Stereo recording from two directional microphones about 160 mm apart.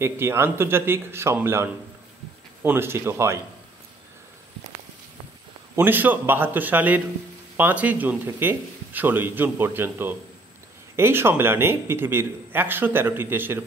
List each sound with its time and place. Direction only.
0.0 s speech: 15° right (ahead or behind)
5.8 s speech: 10° right (ahead or behind)